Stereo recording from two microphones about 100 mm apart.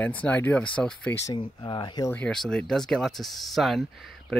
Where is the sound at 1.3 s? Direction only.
50° left (ahead or behind).